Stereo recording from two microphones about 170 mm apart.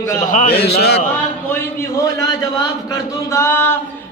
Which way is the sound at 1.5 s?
15° left (ahead or behind).